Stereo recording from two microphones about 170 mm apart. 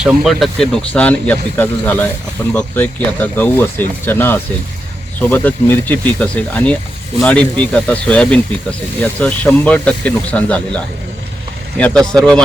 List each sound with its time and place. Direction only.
0.0 s speech: centre (ahead or behind)